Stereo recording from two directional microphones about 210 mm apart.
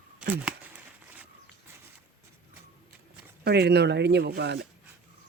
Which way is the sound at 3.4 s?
50° right (ahead or behind).